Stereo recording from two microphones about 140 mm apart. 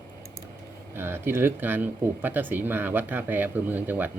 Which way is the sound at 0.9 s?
15° right (ahead or behind).